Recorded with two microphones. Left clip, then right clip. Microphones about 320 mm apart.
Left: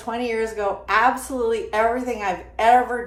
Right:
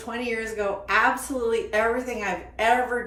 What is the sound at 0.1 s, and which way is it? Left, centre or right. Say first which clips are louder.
Speech: left 5 dB; centre.